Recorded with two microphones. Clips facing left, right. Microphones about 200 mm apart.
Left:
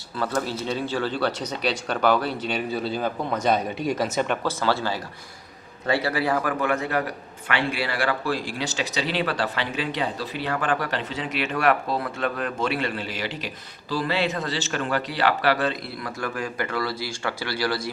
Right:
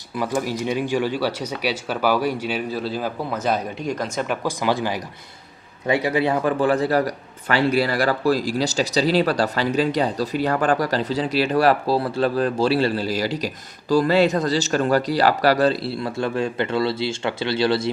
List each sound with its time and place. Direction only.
0.2 s speech: 15° right (ahead or behind); by 4.4 s centre (ahead or behind)
4.4 s a man's voice: 15° right (ahead or behind)